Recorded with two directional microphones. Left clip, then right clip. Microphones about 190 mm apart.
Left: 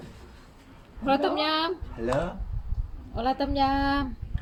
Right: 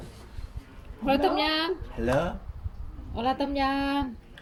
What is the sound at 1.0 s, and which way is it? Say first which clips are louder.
Speech: even; 15° right (ahead or behind).